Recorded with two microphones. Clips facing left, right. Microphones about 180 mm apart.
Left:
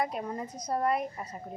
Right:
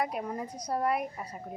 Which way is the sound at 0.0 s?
5° right (ahead or behind).